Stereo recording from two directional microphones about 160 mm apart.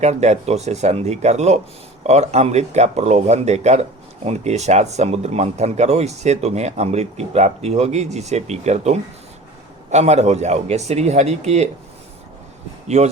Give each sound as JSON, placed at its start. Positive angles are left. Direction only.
{"t": 0.0, "sound": "speech", "side_deg": -45}